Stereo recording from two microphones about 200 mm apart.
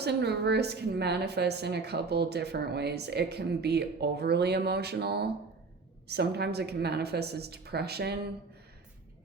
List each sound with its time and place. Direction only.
0.0 s a woman's voice: 55° right (ahead or behind)